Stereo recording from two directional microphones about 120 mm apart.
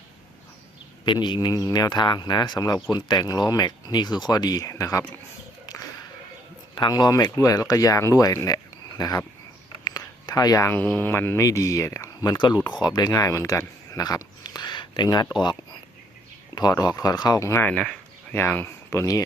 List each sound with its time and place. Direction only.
1.0 s speech: 40° left (ahead or behind)
6.7 s speech: 35° left (ahead or behind)
9.8 s a sound: 35° left (ahead or behind)
10.7 s speech: 15° left (ahead or behind); by 15.3 s 35° left (ahead or behind)
16.6 s speech: 35° left (ahead or behind)